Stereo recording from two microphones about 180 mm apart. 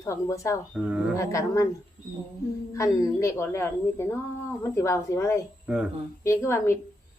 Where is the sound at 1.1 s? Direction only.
15° left (ahead or behind).